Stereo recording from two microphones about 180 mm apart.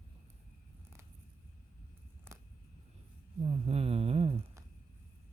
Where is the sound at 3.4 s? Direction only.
35° right (ahead or behind).